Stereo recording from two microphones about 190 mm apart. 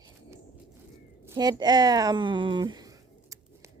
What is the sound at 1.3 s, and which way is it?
Speech, 20° right (ahead or behind).